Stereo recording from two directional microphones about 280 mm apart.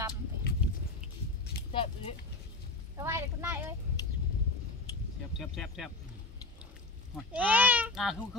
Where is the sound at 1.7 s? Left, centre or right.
Centre.